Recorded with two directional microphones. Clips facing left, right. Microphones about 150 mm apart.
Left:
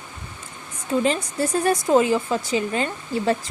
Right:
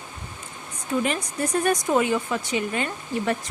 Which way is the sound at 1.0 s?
30° left (ahead or behind).